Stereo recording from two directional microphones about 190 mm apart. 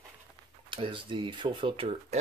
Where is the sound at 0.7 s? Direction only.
25° right (ahead or behind).